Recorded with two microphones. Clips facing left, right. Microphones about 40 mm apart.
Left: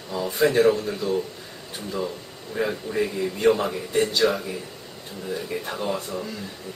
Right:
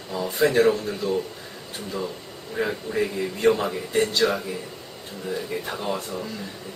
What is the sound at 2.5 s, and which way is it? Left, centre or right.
A man's voice, centre.